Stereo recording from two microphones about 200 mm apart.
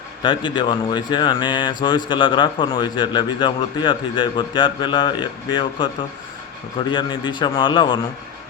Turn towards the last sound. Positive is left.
turn(degrees=25)  # may be behind; listen again after turning